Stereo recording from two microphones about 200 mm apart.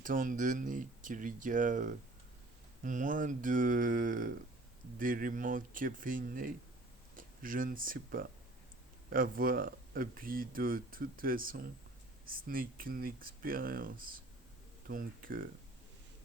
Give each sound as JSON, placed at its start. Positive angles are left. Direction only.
{"t": 0.0, "sound": "speech", "side_deg": -40}